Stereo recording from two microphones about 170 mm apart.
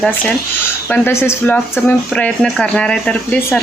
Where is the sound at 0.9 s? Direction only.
10° left (ahead or behind).